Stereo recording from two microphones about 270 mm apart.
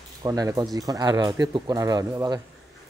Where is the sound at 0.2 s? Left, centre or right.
Centre.